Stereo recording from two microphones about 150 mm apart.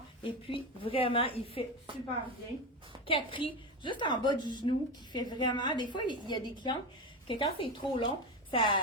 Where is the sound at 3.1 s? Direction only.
35° left (ahead or behind).